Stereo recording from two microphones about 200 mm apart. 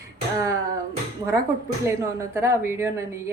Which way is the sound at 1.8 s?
15° right (ahead or behind).